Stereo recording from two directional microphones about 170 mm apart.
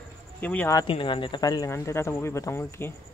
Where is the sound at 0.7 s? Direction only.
30° left (ahead or behind).